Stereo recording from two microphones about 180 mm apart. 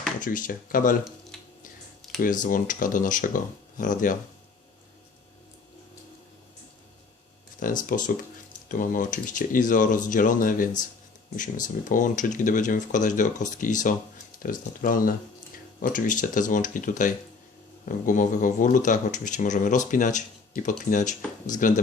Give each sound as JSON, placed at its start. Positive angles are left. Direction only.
{"t": 0.2, "sound": "speech", "side_deg": 45}
{"t": 2.2, "sound": "speech", "side_deg": 45}
{"t": 7.8, "sound": "speech", "side_deg": 45}
{"t": 11.9, "sound": "speech", "side_deg": 45}